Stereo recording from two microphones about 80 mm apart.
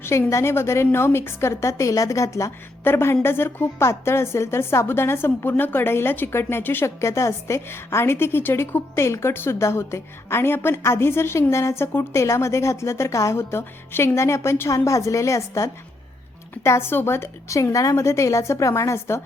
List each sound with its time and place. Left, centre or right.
0.0 s a woman's voice: left